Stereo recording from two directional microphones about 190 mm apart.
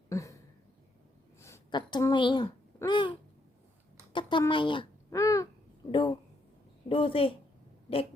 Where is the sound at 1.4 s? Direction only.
15° left (ahead or behind).